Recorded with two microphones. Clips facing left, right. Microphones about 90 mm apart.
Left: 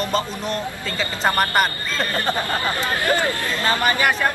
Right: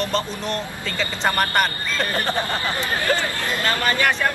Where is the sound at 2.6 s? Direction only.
30° left (ahead or behind).